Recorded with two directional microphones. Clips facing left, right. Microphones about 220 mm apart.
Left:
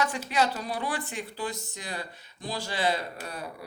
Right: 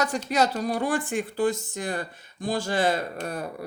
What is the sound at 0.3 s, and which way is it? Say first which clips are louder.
Speech: right 4 dB; 40° right (ahead or behind).